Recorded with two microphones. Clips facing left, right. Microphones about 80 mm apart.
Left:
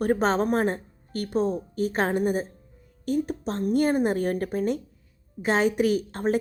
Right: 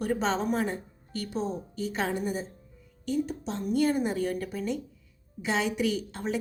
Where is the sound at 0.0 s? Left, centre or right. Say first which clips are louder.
Left 5 dB; left.